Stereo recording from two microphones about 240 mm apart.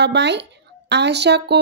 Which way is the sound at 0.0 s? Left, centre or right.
Right.